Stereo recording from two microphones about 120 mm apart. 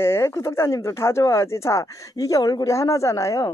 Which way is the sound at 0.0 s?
20° left (ahead or behind).